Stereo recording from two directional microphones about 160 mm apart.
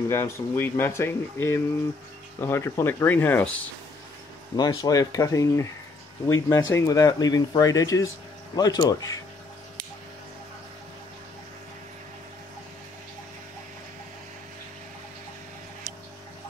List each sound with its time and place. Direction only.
0.1 s speech: 15° left (ahead or behind)
4.6 s speech: 25° left (ahead or behind)